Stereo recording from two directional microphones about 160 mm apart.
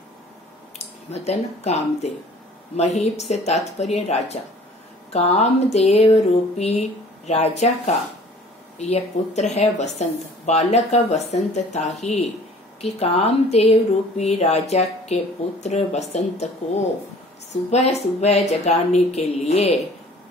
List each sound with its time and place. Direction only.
0.7 s speech: 40° left (ahead or behind)
17.6 s speech: 45° left (ahead or behind)